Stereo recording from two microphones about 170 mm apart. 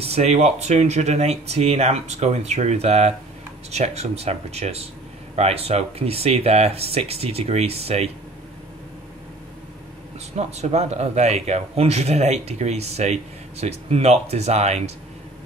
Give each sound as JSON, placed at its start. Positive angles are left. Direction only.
{"t": 0.0, "sound": "speech", "side_deg": -40}
{"t": 10.3, "sound": "speech", "side_deg": -40}